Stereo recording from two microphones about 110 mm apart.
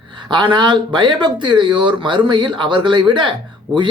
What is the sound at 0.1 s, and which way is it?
Speech, 45° right (ahead or behind).